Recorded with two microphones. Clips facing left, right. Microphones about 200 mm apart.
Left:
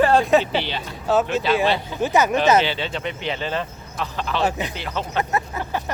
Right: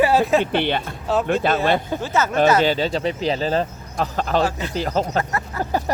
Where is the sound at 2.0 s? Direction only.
15° left (ahead or behind).